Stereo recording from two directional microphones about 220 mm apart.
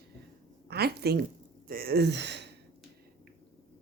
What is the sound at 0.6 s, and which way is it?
A woman's voice, 45° right (ahead or behind).